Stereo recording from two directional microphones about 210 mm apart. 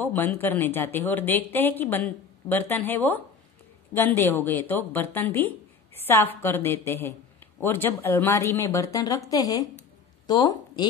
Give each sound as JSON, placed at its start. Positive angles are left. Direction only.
{"t": 0.0, "sound": "speech", "side_deg": 10}